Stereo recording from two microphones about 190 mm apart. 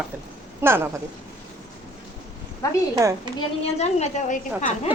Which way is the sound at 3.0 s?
15° right (ahead or behind).